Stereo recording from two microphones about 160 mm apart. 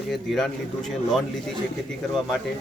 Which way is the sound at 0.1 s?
Centre (ahead or behind).